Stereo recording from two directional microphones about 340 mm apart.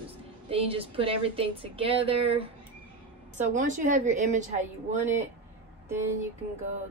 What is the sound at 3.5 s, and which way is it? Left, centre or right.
Speech, right.